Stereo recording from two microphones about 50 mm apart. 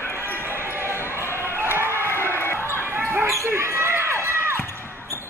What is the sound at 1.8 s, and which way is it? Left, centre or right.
Basketball bounce, left.